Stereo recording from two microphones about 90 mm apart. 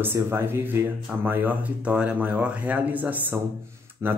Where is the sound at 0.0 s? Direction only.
25° right (ahead or behind).